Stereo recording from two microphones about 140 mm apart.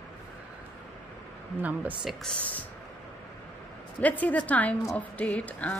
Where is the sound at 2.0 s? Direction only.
5° left (ahead or behind).